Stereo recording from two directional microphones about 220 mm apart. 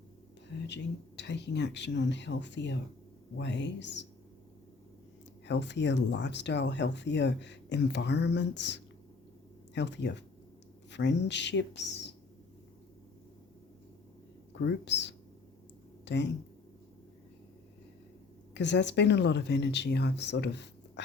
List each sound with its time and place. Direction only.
0.7 s speech: 50° left (ahead or behind)
5.5 s speech: 55° left (ahead or behind)
14.6 s speech: 55° left (ahead or behind)
18.5 s speech: 55° left (ahead or behind)